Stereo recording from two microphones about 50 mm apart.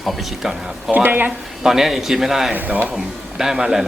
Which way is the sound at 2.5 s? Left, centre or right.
Right.